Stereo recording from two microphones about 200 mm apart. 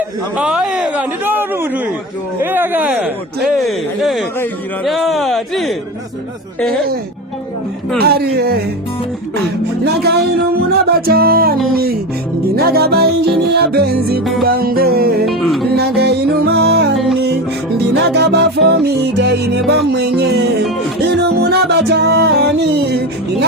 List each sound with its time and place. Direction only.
0.3 s a man's voice: 5° right (ahead or behind)
8.0 s music: 55° right (ahead or behind)
9.8 s music: 55° right (ahead or behind)
12.5 s music: 50° right (ahead or behind)
15.3 s music: centre (ahead or behind)
15.7 s music: 55° right (ahead or behind)